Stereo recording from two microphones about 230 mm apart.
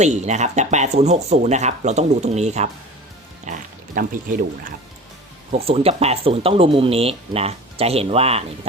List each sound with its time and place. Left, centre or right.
0.0 s speech: right
5.5 s speech: right